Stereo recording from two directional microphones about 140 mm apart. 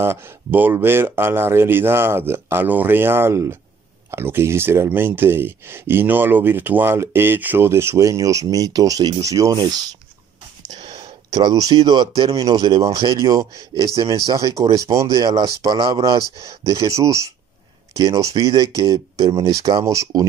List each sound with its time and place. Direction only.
0.0 s speech: 15° right (ahead or behind)
10.8 s a sound: 45° right (ahead or behind)
11.3 s speech: 25° right (ahead or behind)